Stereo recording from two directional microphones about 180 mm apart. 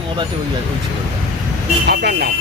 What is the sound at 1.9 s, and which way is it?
Speech, 60° right (ahead or behind).